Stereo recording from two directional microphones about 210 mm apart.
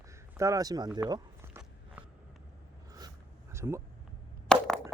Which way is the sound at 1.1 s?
10° right (ahead or behind).